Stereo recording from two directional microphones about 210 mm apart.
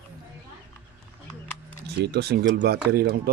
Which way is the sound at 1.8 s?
50° right (ahead or behind).